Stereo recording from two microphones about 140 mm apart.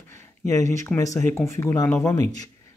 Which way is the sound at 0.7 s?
20° left (ahead or behind).